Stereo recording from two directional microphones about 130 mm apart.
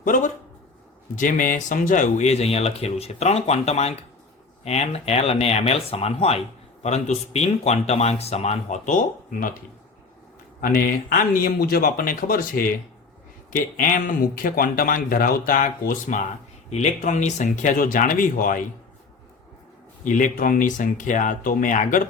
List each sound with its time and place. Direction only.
0.0 s speech: 90° left
10.6 s speech: 90° left
20.1 s speech: 85° left